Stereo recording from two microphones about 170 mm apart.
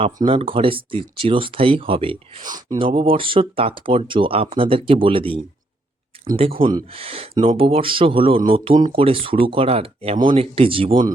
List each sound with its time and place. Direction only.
0.2 s speech: 35° right (ahead or behind)